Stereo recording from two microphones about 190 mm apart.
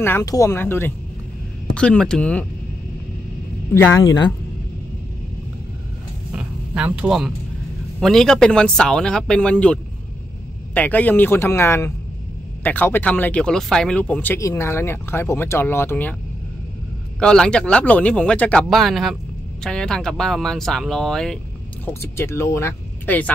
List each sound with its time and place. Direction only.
0.0 s speech: 15° left (ahead or behind)
3.7 s speech: 15° left (ahead or behind)
6.3 s music: 5° right (ahead or behind)
8.0 s speech: centre (ahead or behind)
17.2 s speech: 5° left (ahead or behind)
21.8 s speech: 15° left (ahead or behind)